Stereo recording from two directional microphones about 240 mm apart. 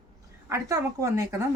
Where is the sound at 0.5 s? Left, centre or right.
Centre.